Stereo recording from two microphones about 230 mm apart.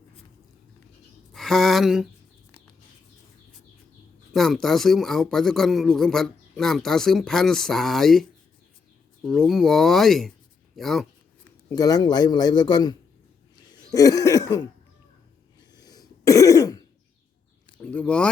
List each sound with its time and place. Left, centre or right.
1.3 s a sound: centre
4.4 s speech: centre
11.7 s a man's voice: centre
13.9 s cough: centre
15.7 s throat clearing: centre
17.8 s speech: centre